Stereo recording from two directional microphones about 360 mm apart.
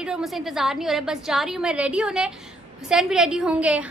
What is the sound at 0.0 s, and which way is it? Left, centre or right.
A woman's voice, centre.